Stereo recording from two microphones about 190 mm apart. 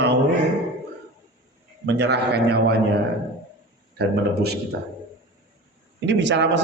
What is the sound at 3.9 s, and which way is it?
Speech, 60° right (ahead or behind).